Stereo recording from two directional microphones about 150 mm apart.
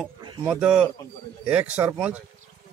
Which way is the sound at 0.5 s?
5° right (ahead or behind).